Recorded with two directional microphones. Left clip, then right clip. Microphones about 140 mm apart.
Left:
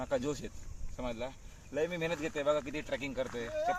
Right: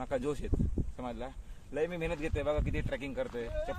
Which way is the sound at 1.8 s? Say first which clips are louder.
Even; 55° right (ahead or behind).